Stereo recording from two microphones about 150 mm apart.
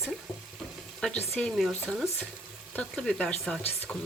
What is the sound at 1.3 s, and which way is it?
Speech, centre (ahead or behind).